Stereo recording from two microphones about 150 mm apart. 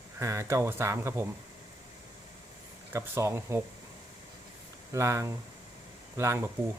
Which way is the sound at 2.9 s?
20° right (ahead or behind).